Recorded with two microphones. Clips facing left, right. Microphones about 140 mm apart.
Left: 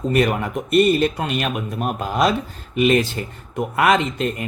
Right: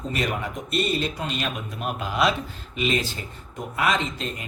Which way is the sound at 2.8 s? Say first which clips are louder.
Left 9 dB; 60° left (ahead or behind).